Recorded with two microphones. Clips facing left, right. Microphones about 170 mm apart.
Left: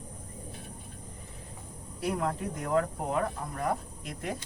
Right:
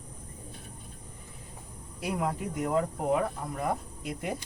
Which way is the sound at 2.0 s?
10° right (ahead or behind).